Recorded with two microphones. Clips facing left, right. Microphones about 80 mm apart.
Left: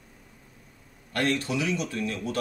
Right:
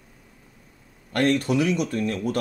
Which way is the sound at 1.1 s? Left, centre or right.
Right.